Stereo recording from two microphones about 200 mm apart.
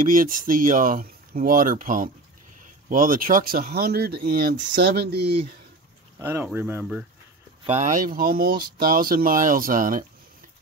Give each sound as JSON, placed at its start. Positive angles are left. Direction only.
{"t": 0.0, "sound": "speech", "side_deg": -45}
{"t": 6.1, "sound": "speech", "side_deg": -10}
{"t": 7.6, "sound": "speech", "side_deg": -35}